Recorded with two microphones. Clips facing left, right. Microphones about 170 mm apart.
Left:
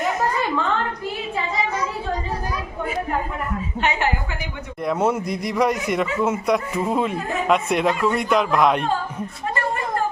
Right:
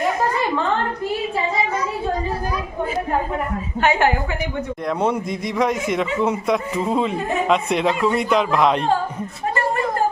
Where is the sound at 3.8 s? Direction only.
50° right (ahead or behind).